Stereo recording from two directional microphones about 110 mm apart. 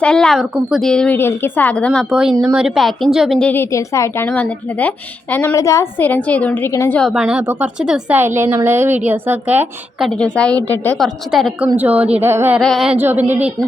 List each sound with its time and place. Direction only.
0.0 s a woman's voice: 5° left (ahead or behind)
0.5 s speech: 5° right (ahead or behind)
0.9 s a woman's voice: 5° left (ahead or behind)
1.1 s a woman's voice: 20° left (ahead or behind)
2.0 s speech: 5° right (ahead or behind)
3.3 s a woman's voice: 15° left (ahead or behind)
5.5 s a woman's voice: 30° left (ahead or behind)
6.0 s a woman's voice: 15° left (ahead or behind)
7.1 s a woman's voice: 5° right (ahead or behind)
10.0 s a woman's voice: 10° left (ahead or behind)
10.9 s speech: centre (ahead or behind)
11.8 s a woman's voice: 15° right (ahead or behind)
12.6 s speech: 5° right (ahead or behind)
13.0 s speech: 20° right (ahead or behind)